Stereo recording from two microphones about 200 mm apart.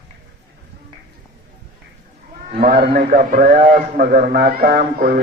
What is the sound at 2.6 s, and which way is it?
A man's voice, 50° right (ahead or behind).